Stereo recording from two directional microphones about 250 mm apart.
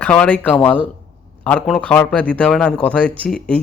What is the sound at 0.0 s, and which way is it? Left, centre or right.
Speech, centre.